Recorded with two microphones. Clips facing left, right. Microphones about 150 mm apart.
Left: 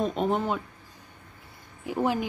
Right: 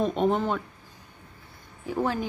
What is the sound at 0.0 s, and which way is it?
Speech, centre (ahead or behind).